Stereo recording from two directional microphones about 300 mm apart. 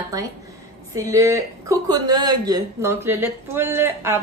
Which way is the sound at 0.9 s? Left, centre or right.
Centre.